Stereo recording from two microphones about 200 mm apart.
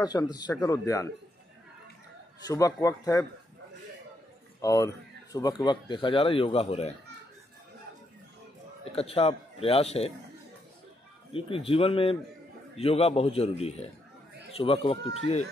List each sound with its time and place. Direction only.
0.0 s speech: 20° left (ahead or behind)
2.4 s a man's voice: 15° left (ahead or behind)
4.6 s speech: 15° left (ahead or behind)
8.9 s speech: 30° left (ahead or behind)
11.3 s a man's voice: 30° left (ahead or behind)